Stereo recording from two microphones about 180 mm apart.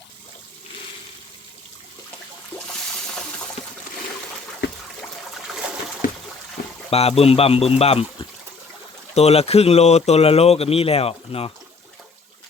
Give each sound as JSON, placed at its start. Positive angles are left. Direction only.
{"t": 3.1, "sound": "water", "side_deg": 5}
{"t": 6.6, "sound": "a sound", "side_deg": 55}
{"t": 6.9, "sound": "speech", "side_deg": 35}